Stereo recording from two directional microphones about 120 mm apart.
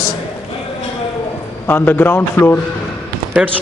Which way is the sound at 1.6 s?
15° left (ahead or behind).